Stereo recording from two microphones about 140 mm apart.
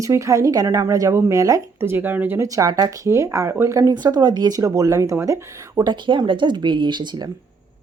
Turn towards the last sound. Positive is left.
turn(degrees=-30)  # may be behind; listen again after turning